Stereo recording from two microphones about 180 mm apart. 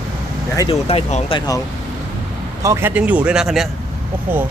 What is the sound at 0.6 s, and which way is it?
Speech, 35° left (ahead or behind).